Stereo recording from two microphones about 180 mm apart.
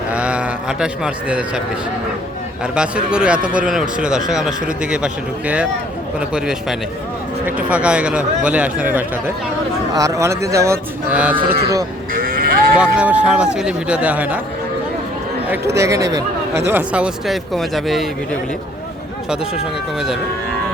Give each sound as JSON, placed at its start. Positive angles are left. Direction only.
{"t": 0.1, "sound": "a sound", "side_deg": -5}
{"t": 2.7, "sound": "speech", "side_deg": -5}
{"t": 12.1, "sound": "livestock", "side_deg": -55}
{"t": 12.7, "sound": "speech", "side_deg": -5}
{"t": 15.4, "sound": "speech", "side_deg": -15}